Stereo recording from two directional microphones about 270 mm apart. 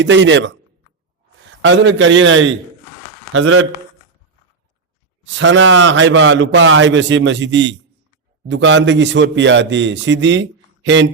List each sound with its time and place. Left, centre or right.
0.0 s a man's voice: right
1.6 s a man's voice: right
5.4 s a man's voice: right